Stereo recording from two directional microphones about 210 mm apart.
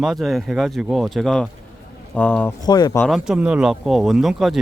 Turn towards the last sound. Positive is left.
turn(degrees=0)  # may be behind; listen again after turning